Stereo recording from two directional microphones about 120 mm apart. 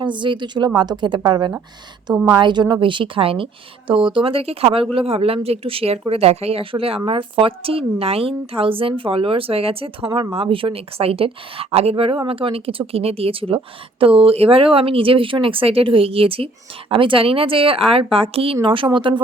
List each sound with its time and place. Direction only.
0.0 s a woman's voice: 40° right (ahead or behind)